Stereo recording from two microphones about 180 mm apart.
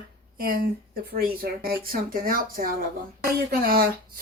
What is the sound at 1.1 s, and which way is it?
Speech, 55° right (ahead or behind).